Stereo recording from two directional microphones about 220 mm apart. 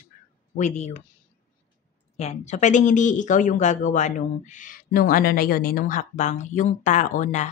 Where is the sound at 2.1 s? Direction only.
30° left (ahead or behind).